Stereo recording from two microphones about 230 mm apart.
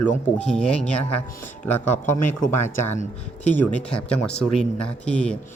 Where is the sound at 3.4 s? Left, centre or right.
Centre.